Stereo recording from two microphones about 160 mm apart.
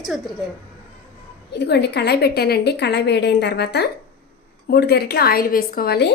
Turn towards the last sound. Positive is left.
turn(degrees=85)